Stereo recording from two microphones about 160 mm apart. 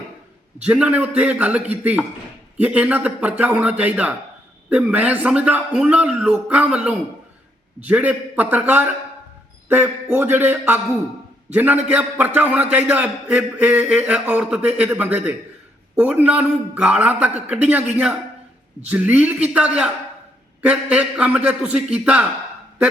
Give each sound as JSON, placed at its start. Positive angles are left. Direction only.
{"t": 0.6, "sound": "a man's voice", "side_deg": -10}
{"t": 18.9, "sound": "a man's voice", "side_deg": -10}